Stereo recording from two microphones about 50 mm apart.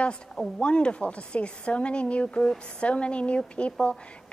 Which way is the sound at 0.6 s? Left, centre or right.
Left.